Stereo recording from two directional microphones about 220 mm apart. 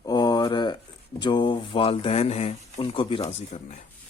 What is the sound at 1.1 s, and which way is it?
Speech, 20° left (ahead or behind).